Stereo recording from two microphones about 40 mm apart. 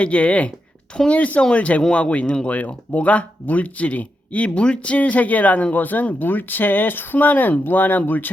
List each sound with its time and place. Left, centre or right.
0.0 s speech: left
2.5 s speech: left
4.9 s speech: left